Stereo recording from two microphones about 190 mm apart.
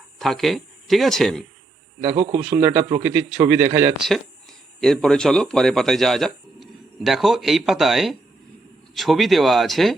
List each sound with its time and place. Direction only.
0.2 s a man's voice: centre (ahead or behind)